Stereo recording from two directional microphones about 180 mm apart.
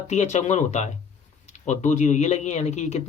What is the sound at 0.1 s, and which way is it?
Speech, 40° left (ahead or behind).